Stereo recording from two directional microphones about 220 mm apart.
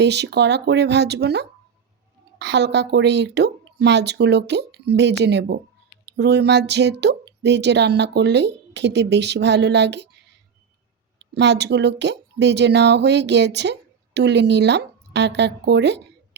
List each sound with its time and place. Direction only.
0.0 s speech: 50° right (ahead or behind)
11.2 s speech: 50° right (ahead or behind)